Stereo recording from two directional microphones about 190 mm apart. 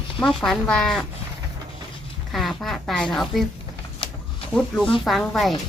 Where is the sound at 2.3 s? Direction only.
Centre (ahead or behind).